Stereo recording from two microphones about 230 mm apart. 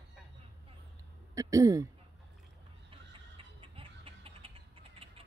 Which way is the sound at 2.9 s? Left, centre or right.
Right.